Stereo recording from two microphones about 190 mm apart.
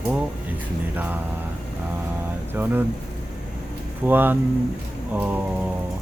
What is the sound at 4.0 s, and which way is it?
Speech, 10° right (ahead or behind).